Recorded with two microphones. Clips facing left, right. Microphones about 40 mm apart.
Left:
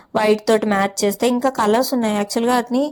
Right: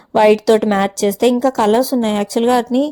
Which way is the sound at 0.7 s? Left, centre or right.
Right.